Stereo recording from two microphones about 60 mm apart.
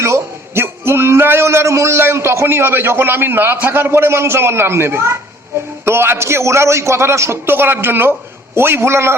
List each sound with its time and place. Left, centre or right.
0.0 s a man's voice: right